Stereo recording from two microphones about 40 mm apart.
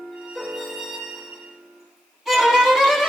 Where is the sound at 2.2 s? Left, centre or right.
Centre.